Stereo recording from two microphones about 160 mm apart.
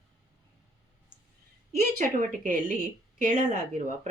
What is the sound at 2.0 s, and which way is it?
Speech, 60° right (ahead or behind).